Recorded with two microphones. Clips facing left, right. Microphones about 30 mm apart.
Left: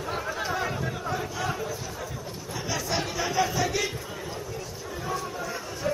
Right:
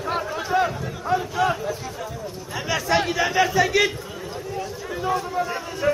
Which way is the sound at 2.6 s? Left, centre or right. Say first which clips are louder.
Right 8 dB; right.